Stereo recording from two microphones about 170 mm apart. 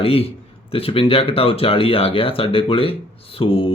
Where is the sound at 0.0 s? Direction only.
35° left (ahead or behind).